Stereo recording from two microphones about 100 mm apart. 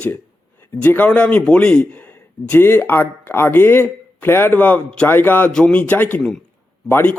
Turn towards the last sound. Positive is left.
turn(degrees=15)  # may be behind; listen again after turning